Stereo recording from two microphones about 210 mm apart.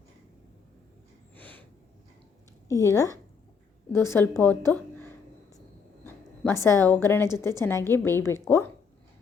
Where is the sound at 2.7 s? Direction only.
15° left (ahead or behind).